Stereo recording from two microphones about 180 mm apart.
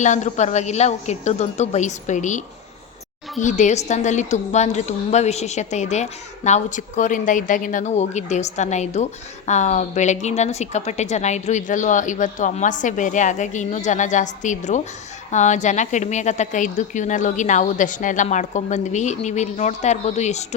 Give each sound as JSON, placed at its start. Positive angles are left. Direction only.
{"t": 0.0, "sound": "a woman's voice", "side_deg": 40}
{"t": 3.4, "sound": "a woman's voice", "side_deg": 45}